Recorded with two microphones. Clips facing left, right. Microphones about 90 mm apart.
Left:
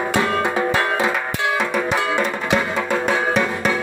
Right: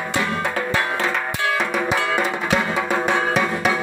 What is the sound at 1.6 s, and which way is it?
Drum, centre (ahead or behind).